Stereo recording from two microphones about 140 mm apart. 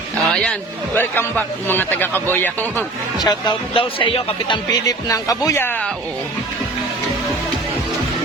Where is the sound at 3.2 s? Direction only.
30° left (ahead or behind).